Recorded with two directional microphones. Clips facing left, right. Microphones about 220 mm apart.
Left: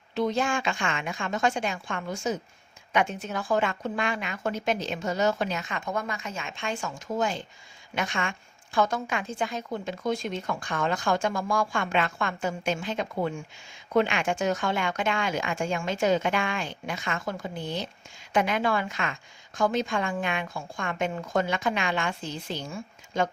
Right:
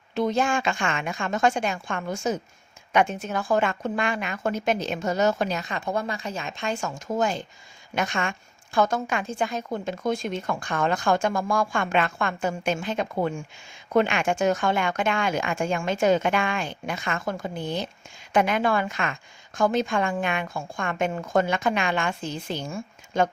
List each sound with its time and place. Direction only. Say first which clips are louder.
0.1 s a woman's voice: right 3 dB; 50° right (ahead or behind)